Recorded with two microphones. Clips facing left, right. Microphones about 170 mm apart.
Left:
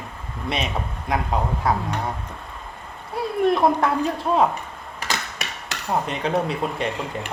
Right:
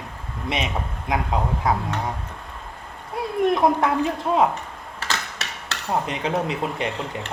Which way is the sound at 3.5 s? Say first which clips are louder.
Left 1 dB; 20° right (ahead or behind).